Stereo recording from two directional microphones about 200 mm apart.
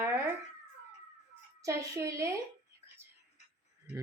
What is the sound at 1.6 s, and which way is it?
Speech, 15° right (ahead or behind).